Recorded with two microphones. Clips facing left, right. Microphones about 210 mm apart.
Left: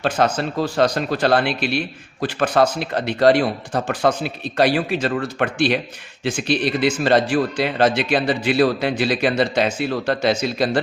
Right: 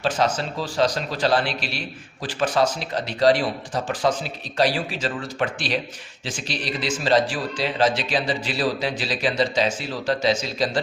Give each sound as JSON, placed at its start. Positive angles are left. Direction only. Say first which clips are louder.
{"t": 0.0, "sound": "speech", "louder": "left 3 dB", "side_deg": 60}